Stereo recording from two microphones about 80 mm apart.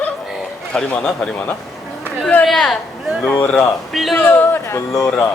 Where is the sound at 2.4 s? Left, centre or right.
Centre.